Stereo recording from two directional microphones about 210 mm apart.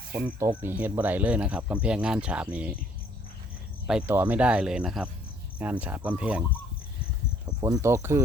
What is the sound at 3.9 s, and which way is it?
Speech, 5° right (ahead or behind).